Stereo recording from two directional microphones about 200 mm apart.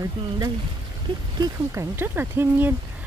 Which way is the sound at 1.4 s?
15° right (ahead or behind).